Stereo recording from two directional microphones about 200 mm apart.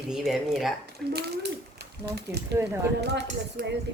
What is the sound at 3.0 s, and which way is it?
Speech, 55° right (ahead or behind).